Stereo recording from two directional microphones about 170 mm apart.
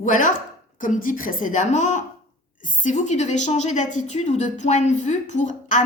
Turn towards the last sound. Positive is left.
turn(degrees=45)  # may be behind; listen again after turning